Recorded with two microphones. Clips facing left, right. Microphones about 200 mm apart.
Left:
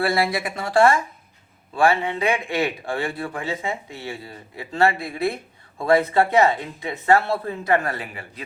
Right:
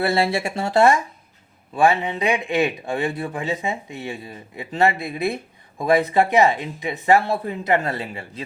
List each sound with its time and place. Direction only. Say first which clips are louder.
0.0 s speech: right 2 dB; 25° right (ahead or behind)